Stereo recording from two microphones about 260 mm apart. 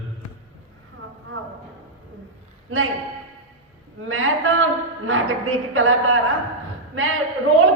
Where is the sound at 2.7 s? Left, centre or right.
Right.